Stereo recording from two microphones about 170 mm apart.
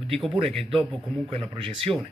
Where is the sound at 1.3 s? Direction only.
30° right (ahead or behind).